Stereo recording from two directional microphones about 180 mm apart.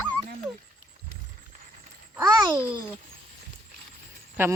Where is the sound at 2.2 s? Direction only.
25° right (ahead or behind).